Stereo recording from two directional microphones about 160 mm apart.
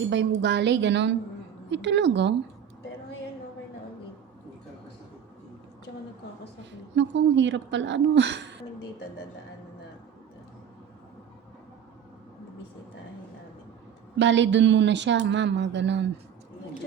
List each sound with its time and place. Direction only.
0.4 s speech: 90° right
6.9 s speech: 90° right
14.2 s speech: 90° right